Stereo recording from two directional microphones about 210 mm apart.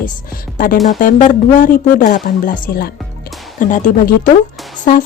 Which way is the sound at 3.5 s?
40° left (ahead or behind).